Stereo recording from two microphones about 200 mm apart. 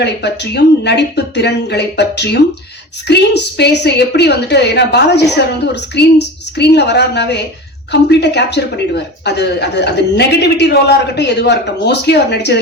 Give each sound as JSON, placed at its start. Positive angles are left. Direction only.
{"t": 0.0, "sound": "a man's voice", "side_deg": 55}